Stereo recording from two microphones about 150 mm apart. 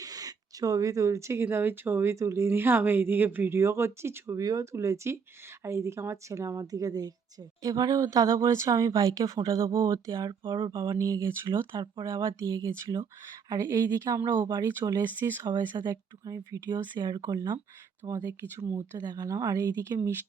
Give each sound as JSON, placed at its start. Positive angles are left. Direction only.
{"t": 0.0, "sound": "a woman's voice", "side_deg": -25}
{"t": 10.4, "sound": "a woman's voice", "side_deg": -30}
{"t": 15.4, "sound": "a woman's voice", "side_deg": -30}